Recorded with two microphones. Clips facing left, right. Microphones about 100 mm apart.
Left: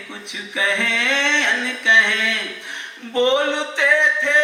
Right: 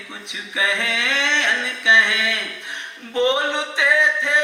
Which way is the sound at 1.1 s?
15° right (ahead or behind).